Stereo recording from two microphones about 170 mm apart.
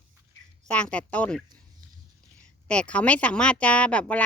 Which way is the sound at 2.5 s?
5° left (ahead or behind).